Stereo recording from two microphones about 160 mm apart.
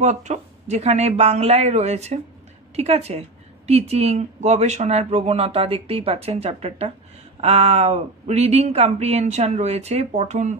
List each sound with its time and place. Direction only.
0.0 s speech: 45° right (ahead or behind)